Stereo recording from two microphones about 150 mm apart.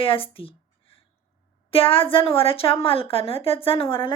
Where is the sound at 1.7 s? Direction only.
35° left (ahead or behind).